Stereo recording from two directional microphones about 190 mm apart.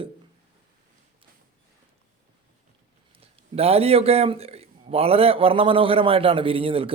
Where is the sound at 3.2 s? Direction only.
30° right (ahead or behind).